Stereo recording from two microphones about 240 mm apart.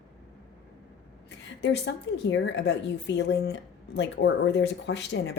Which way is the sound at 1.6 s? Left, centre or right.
Left.